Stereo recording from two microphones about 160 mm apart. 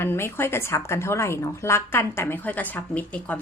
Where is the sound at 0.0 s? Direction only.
15° left (ahead or behind).